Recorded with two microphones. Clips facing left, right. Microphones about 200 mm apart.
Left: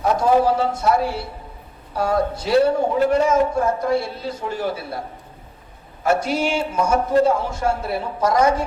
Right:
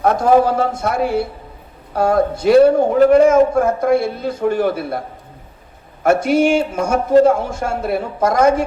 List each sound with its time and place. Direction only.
0.0 s a man's voice: 55° right (ahead or behind)
6.0 s a man's voice: 55° right (ahead or behind)